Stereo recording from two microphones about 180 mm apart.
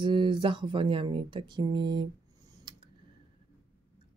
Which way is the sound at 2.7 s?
25° right (ahead or behind).